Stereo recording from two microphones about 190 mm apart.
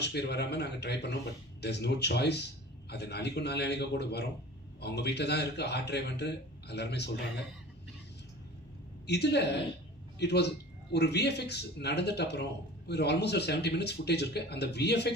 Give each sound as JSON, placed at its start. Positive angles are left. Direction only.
{"t": 0.0, "sound": "a man's voice", "side_deg": 60}
{"t": 9.0, "sound": "a man's voice", "side_deg": 60}